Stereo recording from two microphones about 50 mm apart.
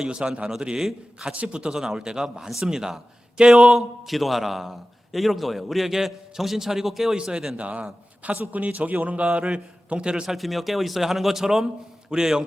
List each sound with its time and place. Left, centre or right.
0.0 s a man's voice: centre
7.5 s a man's voice: right
9.2 s a man's voice: right
10.2 s a man's voice: centre